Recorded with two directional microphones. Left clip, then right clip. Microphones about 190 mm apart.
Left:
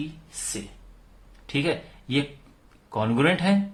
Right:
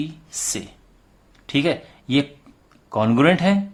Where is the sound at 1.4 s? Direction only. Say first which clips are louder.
Right 5 dB; 40° right (ahead or behind).